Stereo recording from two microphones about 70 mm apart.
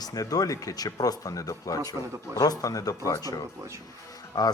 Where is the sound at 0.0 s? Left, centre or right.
Left.